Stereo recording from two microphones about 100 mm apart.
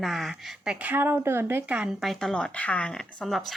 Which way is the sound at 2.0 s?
Centre (ahead or behind).